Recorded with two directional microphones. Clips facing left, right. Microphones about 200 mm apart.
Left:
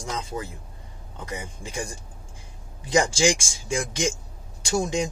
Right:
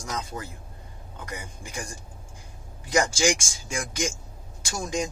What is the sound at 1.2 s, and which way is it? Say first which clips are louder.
Speech: left 4 dB; 25° left (ahead or behind).